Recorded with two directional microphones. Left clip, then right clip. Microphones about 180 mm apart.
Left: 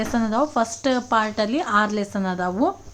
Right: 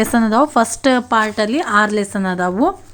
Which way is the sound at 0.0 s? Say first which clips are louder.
Right 8 dB; 30° right (ahead or behind).